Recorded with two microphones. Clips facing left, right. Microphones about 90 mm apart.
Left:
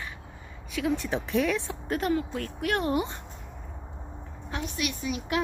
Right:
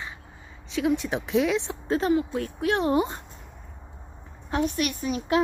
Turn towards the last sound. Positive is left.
turn(degrees=-40)  # may be behind; listen again after turning